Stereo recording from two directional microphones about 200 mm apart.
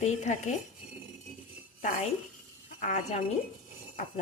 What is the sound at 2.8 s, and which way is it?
Speech, 35° left (ahead or behind).